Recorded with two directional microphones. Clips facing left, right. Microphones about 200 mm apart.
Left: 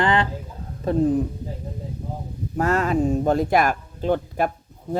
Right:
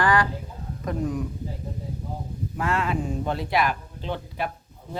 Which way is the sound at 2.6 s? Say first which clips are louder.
Left 6 dB; 40° left (ahead or behind).